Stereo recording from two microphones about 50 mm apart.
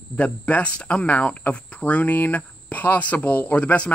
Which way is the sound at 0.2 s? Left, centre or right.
Left.